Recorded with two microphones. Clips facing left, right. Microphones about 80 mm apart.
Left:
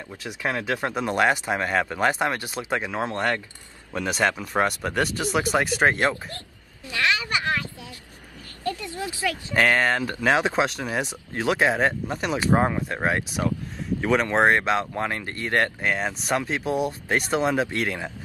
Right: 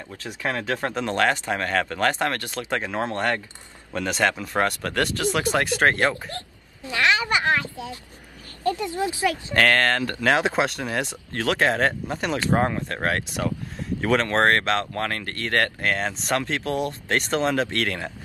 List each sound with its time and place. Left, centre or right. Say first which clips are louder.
0.1 s speech: even; centre
8.6 s speech: right 5 dB; right
9.6 s speech: right 1 dB; centre